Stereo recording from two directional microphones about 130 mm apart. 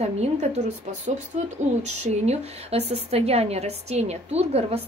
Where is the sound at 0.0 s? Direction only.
55° right (ahead or behind).